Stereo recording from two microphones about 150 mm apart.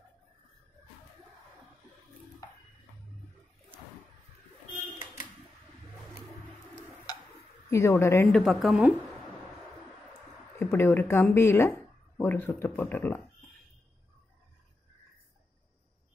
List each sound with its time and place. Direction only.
7.7 s speech: 15° left (ahead or behind)
8.3 s a woman's voice: centre (ahead or behind)
10.6 s speech: 15° left (ahead or behind)